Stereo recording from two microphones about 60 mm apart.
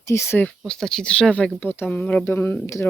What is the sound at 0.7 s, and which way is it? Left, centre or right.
Speech, centre.